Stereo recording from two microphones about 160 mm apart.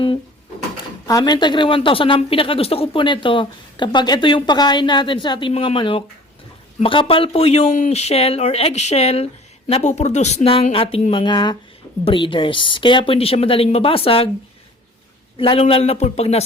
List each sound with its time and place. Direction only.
1.0 s a woman's voice: 25° left (ahead or behind)
15.4 s a woman's voice: 35° left (ahead or behind)